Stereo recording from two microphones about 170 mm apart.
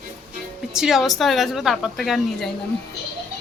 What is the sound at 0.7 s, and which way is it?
A woman's voice, centre (ahead or behind).